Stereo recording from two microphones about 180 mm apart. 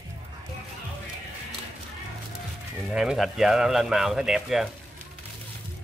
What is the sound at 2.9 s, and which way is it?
Speech, 5° right (ahead or behind).